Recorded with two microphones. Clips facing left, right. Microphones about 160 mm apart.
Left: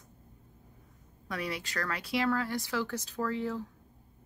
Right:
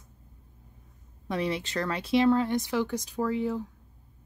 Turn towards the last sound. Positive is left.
turn(degrees=-15)  # may be behind; listen again after turning